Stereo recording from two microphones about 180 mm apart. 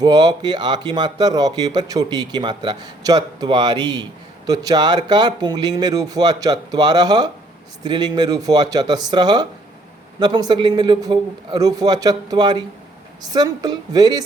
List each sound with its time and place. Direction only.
0.0 s speech: 20° right (ahead or behind)